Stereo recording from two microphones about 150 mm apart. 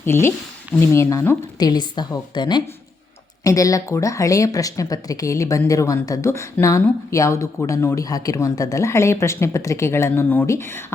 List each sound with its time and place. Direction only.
0.0 s speech: 15° left (ahead or behind)
1.5 s speech: 25° left (ahead or behind)